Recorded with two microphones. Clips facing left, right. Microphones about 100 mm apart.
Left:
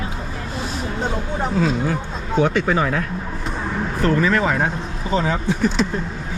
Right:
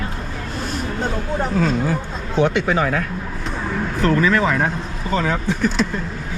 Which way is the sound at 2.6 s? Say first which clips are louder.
Even; 35° left (ahead or behind).